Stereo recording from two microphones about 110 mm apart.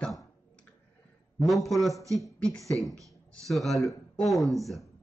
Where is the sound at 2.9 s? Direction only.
30° right (ahead or behind).